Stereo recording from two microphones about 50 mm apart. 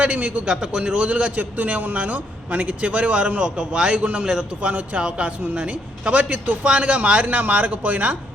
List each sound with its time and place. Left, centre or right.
0.0 s a man's voice: right
0.5 s a man's voice: centre; by 8.1 s right